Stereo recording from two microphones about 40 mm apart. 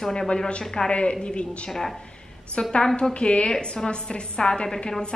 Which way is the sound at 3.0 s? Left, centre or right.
Left.